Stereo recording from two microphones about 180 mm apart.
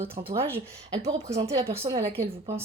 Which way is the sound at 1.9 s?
25° right (ahead or behind).